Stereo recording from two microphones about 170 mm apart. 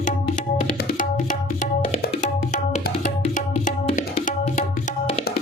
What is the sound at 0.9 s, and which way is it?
Tabla, 50° left (ahead or behind).